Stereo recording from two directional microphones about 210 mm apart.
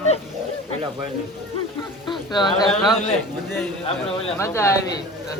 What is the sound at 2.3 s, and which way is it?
Speech, 20° left (ahead or behind).